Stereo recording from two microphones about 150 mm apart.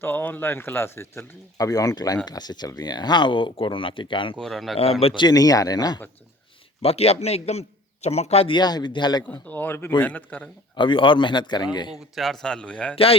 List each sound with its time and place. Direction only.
0.0 s speech: 10° left (ahead or behind); by 4.4 s 35° left (ahead or behind)
4.4 s a man's voice: centre (ahead or behind)
4.8 s speech: 40° left (ahead or behind); by 6.0 s 25° left (ahead or behind)
6.8 s a man's voice: 45° left (ahead or behind)
9.3 s speech: 10° left (ahead or behind)
10.8 s speech: 35° left (ahead or behind)
12.1 s a man's voice: centre (ahead or behind)